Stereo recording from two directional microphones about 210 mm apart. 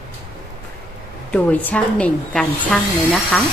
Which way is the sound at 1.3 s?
10° left (ahead or behind).